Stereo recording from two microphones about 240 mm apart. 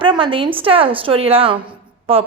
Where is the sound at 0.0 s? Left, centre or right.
Right.